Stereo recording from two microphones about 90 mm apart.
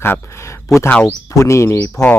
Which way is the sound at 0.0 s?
25° left (ahead or behind).